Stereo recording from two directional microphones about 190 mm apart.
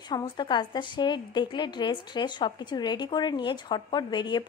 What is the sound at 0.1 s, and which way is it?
A woman's voice, 25° left (ahead or behind).